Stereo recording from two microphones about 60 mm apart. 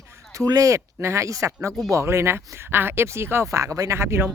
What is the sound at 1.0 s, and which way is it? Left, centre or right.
Speech, right.